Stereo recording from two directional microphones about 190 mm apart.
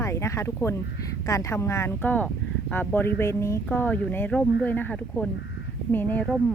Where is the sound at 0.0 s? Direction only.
15° left (ahead or behind).